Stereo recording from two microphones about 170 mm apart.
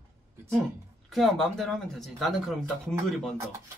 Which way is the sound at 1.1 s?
Centre (ahead or behind).